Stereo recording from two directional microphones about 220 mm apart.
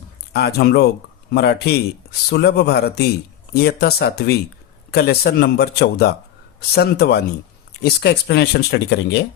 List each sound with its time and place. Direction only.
0.3 s speech: 45° left (ahead or behind)